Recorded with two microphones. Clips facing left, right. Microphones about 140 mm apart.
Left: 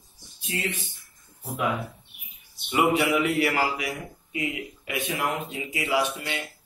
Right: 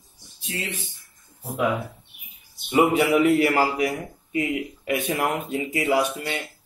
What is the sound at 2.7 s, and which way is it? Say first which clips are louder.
Speech: right 4 dB; 45° right (ahead or behind).